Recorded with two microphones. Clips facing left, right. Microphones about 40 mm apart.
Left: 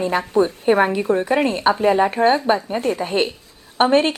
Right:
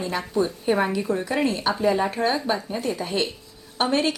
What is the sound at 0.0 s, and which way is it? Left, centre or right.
A woman's voice, left.